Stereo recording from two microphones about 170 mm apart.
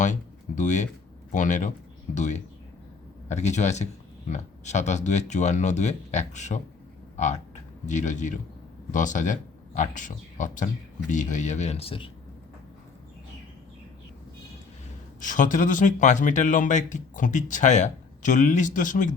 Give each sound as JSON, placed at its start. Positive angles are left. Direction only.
{"t": 0.0, "sound": "a sound", "side_deg": 45}
{"t": 1.3, "sound": "speech", "side_deg": 45}
{"t": 7.9, "sound": "speech", "side_deg": 45}
{"t": 15.2, "sound": "speech", "side_deg": 50}